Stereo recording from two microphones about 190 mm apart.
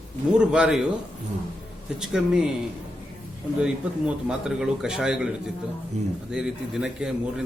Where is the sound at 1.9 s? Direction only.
5° right (ahead or behind).